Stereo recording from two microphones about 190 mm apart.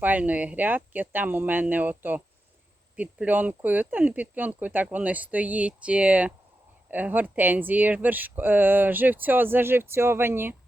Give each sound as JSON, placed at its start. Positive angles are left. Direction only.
{"t": 0.0, "sound": "speech", "side_deg": -10}